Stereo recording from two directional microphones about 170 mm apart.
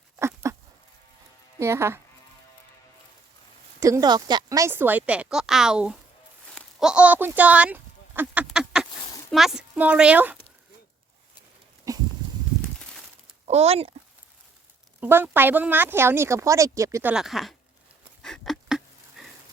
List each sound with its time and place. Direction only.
0.2 s goat: 15° right (ahead or behind)
1.5 s speech: 15° right (ahead or behind)
3.8 s speech: 20° right (ahead or behind)
8.4 s duck: 5° right (ahead or behind)
9.3 s speech: centre (ahead or behind)
11.9 s a sound: 20° right (ahead or behind)
13.4 s speech: 40° right (ahead or behind)
15.0 s speech: 10° right (ahead or behind)
18.2 s a sound: centre (ahead or behind)